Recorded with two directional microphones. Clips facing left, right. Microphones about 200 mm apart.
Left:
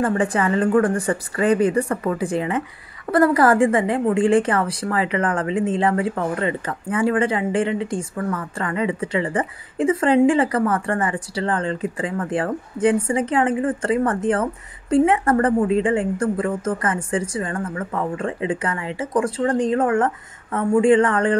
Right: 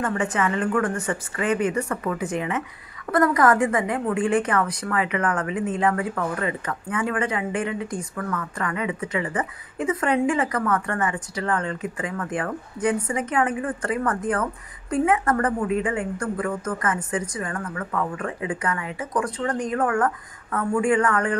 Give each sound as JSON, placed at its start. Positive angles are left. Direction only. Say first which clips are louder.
{"t": 0.0, "sound": "a woman's voice", "louder": "left 4 dB", "side_deg": 30}